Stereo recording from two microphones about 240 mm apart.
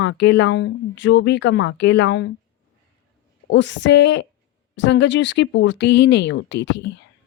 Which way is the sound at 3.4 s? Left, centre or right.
Left.